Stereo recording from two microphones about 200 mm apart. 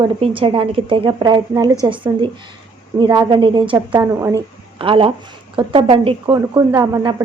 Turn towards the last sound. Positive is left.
turn(degrees=-20)  # may be behind; listen again after turning